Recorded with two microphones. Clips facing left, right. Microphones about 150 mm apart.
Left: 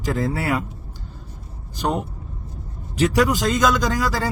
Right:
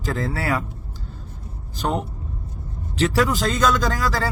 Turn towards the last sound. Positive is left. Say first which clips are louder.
# left 1 dB
turn(degrees=15)  # may be behind; listen again after turning